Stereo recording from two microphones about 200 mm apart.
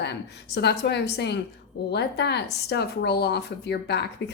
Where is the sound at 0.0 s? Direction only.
55° left (ahead or behind).